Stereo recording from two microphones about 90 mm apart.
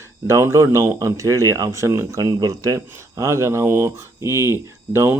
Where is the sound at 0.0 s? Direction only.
30° right (ahead or behind).